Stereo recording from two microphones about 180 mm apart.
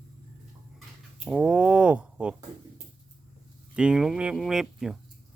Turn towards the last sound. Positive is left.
turn(degrees=-5)  # may be behind; listen again after turning